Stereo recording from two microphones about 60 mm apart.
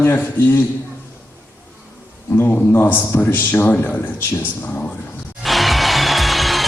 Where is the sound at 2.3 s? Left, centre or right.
Left.